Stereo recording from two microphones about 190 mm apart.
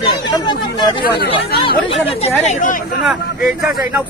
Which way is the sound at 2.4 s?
40° left (ahead or behind).